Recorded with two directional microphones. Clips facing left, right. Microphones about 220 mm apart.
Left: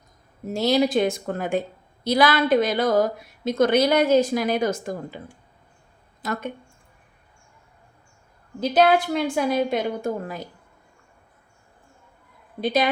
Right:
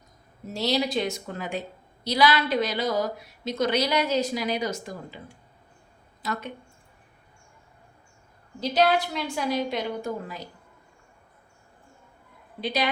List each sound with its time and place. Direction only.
0.4 s a woman's voice: 50° left (ahead or behind)
6.2 s a woman's voice: 50° left (ahead or behind)
8.6 s a woman's voice: 50° left (ahead or behind)
12.5 s a woman's voice: 50° left (ahead or behind)